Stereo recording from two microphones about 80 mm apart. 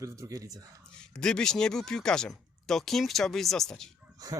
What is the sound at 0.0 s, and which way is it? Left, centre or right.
Speech, right.